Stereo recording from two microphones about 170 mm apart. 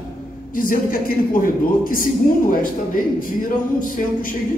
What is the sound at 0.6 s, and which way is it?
A woman's voice, 55° left (ahead or behind).